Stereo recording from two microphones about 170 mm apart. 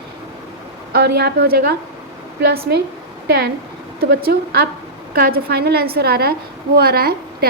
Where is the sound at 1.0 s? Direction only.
75° right (ahead or behind).